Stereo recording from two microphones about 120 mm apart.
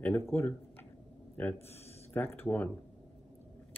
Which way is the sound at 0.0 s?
20° left (ahead or behind).